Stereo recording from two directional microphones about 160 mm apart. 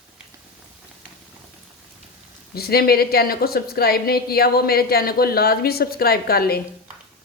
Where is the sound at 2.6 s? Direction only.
75° left (ahead or behind).